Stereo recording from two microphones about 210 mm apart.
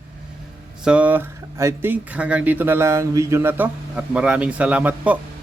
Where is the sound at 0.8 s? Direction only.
5° right (ahead or behind).